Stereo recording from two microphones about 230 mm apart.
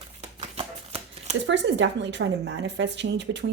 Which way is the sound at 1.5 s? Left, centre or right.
Right.